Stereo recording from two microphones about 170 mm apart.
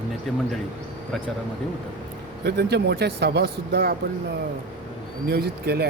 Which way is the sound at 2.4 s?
75° right (ahead or behind).